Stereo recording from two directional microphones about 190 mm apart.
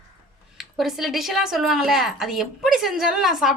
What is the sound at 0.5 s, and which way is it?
Speech, centre (ahead or behind).